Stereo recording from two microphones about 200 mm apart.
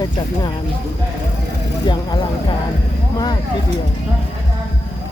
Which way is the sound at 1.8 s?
20° left (ahead or behind).